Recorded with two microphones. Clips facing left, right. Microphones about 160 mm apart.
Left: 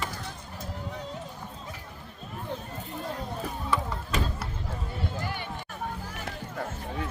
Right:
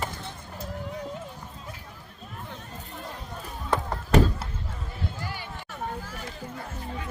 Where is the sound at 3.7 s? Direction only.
60° right (ahead or behind).